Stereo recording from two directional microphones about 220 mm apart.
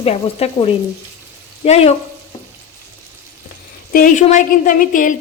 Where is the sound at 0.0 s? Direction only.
25° left (ahead or behind).